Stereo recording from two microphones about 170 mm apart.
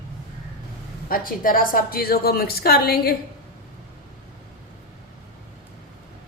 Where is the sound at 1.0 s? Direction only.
55° left (ahead or behind).